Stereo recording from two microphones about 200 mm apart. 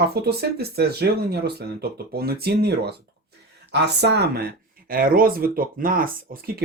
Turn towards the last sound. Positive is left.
turn(degrees=-45)  # may be behind; listen again after turning